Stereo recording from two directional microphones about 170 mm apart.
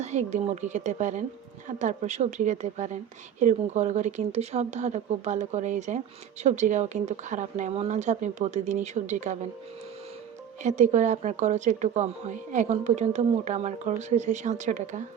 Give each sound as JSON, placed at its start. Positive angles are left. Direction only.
{"t": 0.0, "sound": "speech", "side_deg": -40}
{"t": 10.6, "sound": "speech", "side_deg": -45}